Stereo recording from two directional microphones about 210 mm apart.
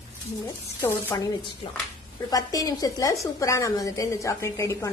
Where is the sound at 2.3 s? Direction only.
15° left (ahead or behind).